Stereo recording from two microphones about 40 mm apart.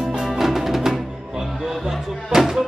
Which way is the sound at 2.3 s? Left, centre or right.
Centre.